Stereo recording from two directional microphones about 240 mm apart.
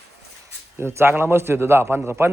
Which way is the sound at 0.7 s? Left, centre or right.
Centre.